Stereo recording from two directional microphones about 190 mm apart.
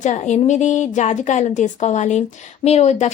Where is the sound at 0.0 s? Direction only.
40° left (ahead or behind).